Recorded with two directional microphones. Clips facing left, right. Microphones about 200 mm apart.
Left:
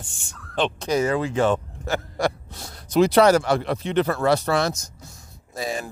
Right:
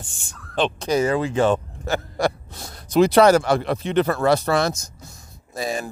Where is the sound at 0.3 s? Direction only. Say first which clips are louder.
Right 2 dB; 35° right (ahead or behind).